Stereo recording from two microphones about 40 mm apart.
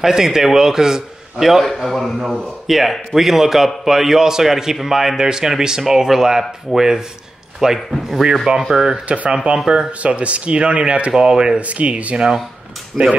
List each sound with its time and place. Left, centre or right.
0.0 s a man's voice: centre
1.6 s a man's voice: centre
9.3 s speech: right
11.6 s speech: right
12.9 s a man's voice: centre